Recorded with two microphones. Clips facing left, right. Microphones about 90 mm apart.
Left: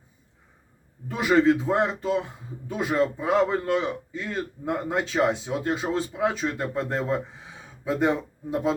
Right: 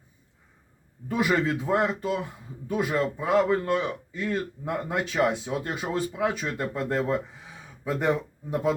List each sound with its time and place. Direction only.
1.1 s a man's voice: 25° left (ahead or behind)